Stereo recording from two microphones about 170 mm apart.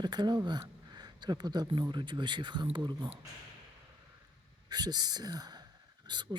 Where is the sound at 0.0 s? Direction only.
25° right (ahead or behind).